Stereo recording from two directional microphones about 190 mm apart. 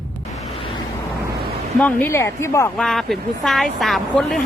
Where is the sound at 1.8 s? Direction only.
10° left (ahead or behind).